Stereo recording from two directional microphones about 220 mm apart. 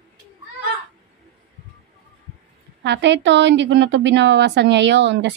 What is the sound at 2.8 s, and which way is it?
A woman's voice, 50° right (ahead or behind).